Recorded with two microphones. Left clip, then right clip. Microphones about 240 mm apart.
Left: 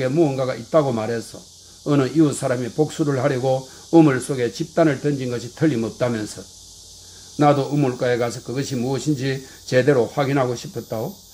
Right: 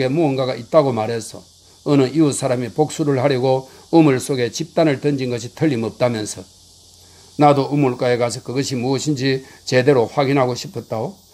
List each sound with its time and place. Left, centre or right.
0.0 s speech: right
7.3 s speech: right